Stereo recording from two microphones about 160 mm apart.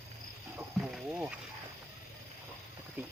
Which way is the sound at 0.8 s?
5° right (ahead or behind).